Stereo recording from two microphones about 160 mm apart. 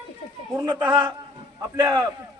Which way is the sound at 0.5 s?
25° right (ahead or behind).